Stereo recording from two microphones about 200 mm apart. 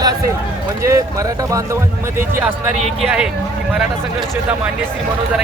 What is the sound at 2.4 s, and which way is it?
Speech, 5° right (ahead or behind).